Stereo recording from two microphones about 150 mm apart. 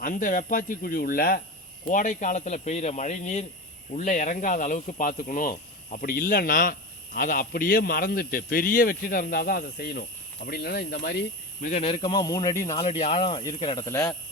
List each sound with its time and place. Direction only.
0.0 s speech: 60° left (ahead or behind); by 1.4 s 80° left
1.9 s speech: 60° left (ahead or behind); by 11.2 s 90° left
11.7 s speech: 40° left (ahead or behind); by 12.8 s 20° left (ahead or behind)
12.8 s speech: 40° left (ahead or behind)
13.8 s speech: 20° left (ahead or behind)